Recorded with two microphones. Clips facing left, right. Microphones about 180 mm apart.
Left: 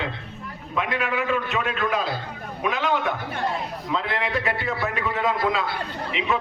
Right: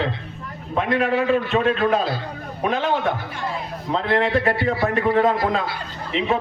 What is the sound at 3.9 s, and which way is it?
A man's voice, 45° right (ahead or behind).